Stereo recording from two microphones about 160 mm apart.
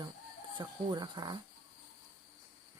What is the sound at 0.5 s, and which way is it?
Speech, 25° right (ahead or behind).